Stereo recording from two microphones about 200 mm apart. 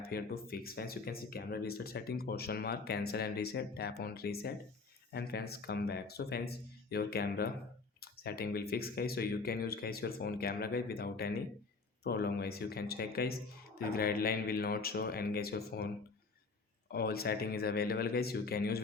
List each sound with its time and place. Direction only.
0.0 s speech: 50° left (ahead or behind)
16.9 s speech: 50° left (ahead or behind)